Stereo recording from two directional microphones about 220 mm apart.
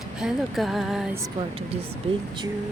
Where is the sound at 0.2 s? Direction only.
Centre (ahead or behind).